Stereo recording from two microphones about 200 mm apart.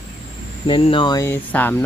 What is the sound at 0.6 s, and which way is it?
Speech, 25° left (ahead or behind).